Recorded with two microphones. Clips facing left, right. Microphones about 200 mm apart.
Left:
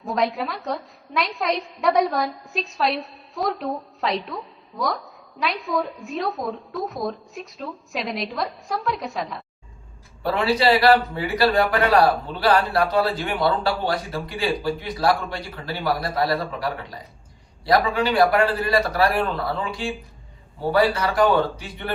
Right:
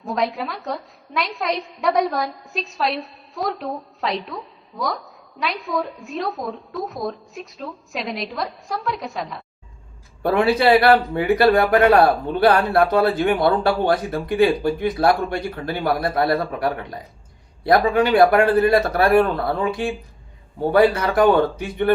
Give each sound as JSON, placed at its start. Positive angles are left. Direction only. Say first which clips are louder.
{"t": 0.0, "sound": "a woman's voice", "louder": "even", "side_deg": 0}
{"t": 10.2, "sound": "a man's voice", "louder": "right 3 dB", "side_deg": -55}